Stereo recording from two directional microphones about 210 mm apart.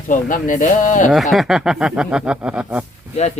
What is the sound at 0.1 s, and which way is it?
Speech, 40° left (ahead or behind).